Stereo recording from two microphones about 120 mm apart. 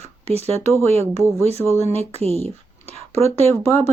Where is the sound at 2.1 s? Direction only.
60° right (ahead or behind).